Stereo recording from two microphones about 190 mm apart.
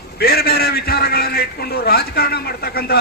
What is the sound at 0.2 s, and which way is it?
A man's voice, 55° left (ahead or behind).